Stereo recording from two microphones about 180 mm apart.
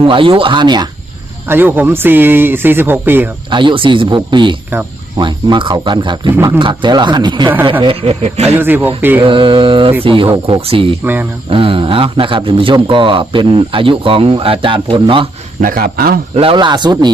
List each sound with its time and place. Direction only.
0.0 s a man's voice: 30° right (ahead or behind)
1.5 s speech: 10° right (ahead or behind)
3.5 s a man's voice: 25° right (ahead or behind)
8.5 s speech: 10° right (ahead or behind)
9.2 s a man's voice: 30° right (ahead or behind)
11.0 s speech: 10° right (ahead or behind)
11.4 s a man's voice: 30° right (ahead or behind)
15.6 s a man's voice: 55° right (ahead or behind)
16.3 s a man's voice: 30° right (ahead or behind)